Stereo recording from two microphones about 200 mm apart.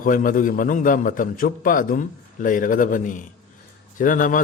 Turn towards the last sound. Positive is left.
turn(degrees=40)  # may be behind; listen again after turning